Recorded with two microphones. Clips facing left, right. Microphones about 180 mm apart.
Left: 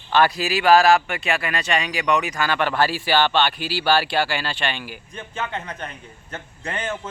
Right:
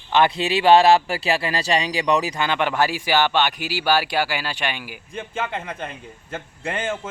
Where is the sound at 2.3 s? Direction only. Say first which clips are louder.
Even; 20° right (ahead or behind).